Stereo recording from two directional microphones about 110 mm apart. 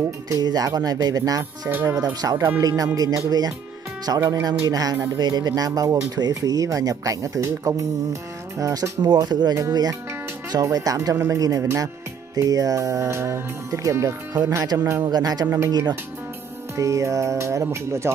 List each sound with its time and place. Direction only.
0.3 s speech: 35° right (ahead or behind)
1.7 s speech: 20° right (ahead or behind)
15.0 s speech: 35° right (ahead or behind)
16.7 s speech: 30° right (ahead or behind)